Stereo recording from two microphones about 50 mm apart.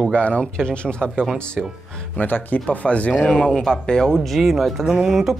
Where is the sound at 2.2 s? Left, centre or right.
Left.